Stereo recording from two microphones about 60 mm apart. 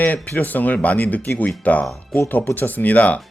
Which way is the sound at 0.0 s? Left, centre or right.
Left.